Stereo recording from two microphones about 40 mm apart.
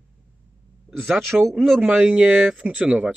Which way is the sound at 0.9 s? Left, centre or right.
Right.